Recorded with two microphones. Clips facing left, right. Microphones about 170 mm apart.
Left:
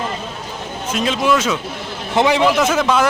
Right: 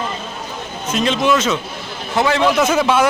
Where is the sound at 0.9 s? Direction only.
5° left (ahead or behind).